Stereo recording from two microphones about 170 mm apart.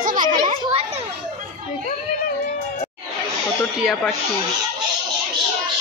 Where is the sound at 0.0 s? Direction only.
55° right (ahead or behind).